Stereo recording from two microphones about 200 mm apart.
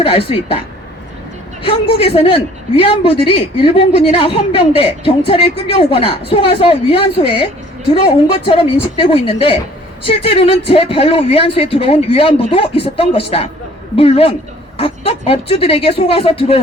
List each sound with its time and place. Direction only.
0.0 s a man's voice: 30° left (ahead or behind)
1.6 s a man's voice: 30° left (ahead or behind)